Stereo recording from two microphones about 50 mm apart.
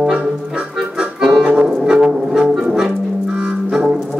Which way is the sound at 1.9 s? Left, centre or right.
Centre.